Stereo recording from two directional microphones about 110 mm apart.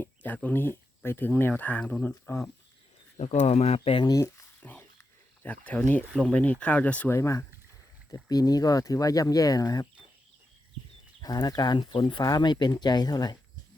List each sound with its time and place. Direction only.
0.0 s a sound: 15° left (ahead or behind)
0.4 s speech: 20° left (ahead or behind)
3.2 s speech: 85° left
3.9 s speech: 40° left (ahead or behind)
4.6 s a sound: 15° left (ahead or behind)
5.4 s speech: 15° left (ahead or behind)
7.2 s speech: 25° left (ahead or behind)
11.2 s speech: 35° left (ahead or behind)